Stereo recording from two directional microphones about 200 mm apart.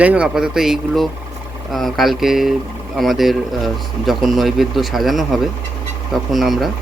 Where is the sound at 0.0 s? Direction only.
5° right (ahead or behind).